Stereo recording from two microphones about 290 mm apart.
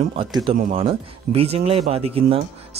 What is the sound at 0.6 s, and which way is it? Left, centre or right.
Speech, right.